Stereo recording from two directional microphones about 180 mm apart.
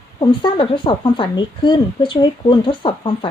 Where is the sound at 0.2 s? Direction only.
25° left (ahead or behind).